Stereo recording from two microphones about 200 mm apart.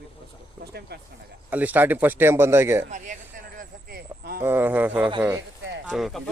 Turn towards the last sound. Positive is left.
turn(degrees=0)  # may be behind; listen again after turning